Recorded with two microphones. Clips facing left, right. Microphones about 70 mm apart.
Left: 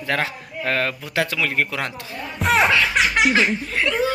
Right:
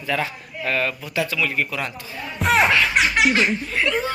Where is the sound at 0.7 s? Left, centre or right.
Left.